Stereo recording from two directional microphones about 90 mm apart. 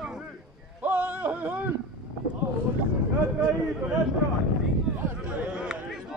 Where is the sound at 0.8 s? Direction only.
20° right (ahead or behind).